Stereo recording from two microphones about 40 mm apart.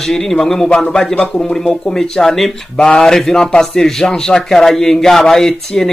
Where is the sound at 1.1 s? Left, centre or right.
Left.